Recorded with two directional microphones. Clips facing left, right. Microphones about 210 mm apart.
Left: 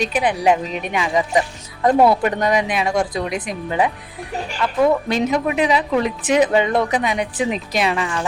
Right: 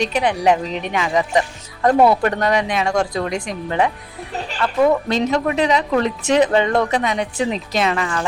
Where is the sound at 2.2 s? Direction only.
15° left (ahead or behind).